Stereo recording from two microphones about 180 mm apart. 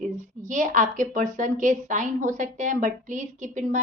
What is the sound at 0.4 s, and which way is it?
A woman's voice, 45° right (ahead or behind).